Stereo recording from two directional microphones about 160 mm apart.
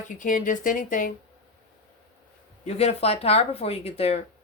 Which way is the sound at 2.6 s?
40° left (ahead or behind).